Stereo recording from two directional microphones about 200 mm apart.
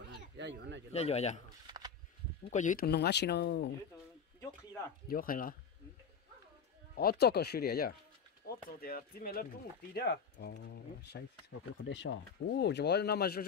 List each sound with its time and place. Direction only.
0.1 s a sound: 65° right (ahead or behind)
0.9 s speech: 35° left (ahead or behind)
2.5 s speech: 40° left (ahead or behind); by 3.7 s 55° left (ahead or behind)
5.0 s speech: 45° left (ahead or behind)
7.0 s speech: 50° left (ahead or behind)